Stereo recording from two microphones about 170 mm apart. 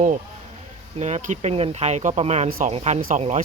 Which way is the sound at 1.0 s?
45° right (ahead or behind).